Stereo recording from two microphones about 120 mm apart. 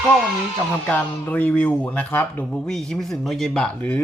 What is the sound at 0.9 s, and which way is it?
Speech, 15° left (ahead or behind).